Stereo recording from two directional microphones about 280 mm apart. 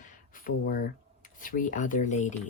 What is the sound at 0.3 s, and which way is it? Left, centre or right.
Speech, left.